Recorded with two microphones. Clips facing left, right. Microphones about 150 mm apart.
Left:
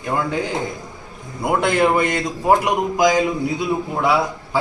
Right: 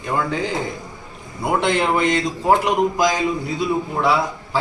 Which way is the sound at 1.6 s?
10° left (ahead or behind).